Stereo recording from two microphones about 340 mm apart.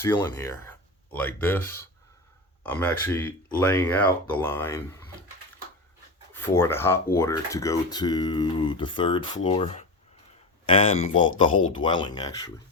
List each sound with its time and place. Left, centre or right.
0.0 s speech: centre
6.3 s speech: centre